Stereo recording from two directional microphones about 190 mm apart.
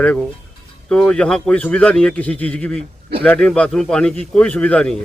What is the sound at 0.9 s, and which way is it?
Speech, 5° left (ahead or behind).